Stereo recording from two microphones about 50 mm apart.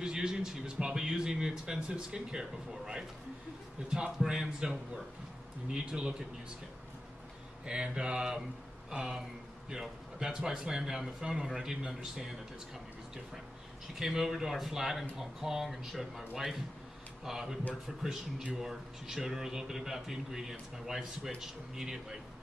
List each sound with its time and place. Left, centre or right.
0.0 s a man's voice: centre
7.6 s a man's voice: centre
13.9 s speech: centre
18.6 s a man's voice: centre